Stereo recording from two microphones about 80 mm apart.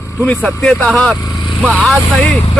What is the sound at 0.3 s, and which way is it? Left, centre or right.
Speech, centre.